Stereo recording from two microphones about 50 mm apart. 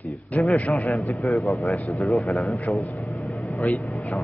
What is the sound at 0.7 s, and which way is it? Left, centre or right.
A man's voice, centre.